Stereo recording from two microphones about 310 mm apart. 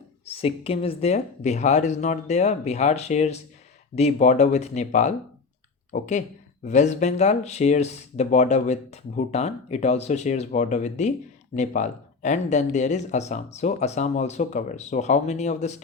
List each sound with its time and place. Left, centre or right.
0.3 s speech: centre